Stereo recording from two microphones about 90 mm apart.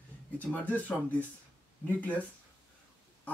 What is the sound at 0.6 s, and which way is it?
Speech, 20° left (ahead or behind).